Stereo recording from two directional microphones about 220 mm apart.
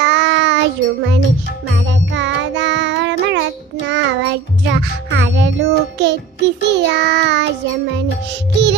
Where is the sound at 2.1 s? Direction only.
55° right (ahead or behind).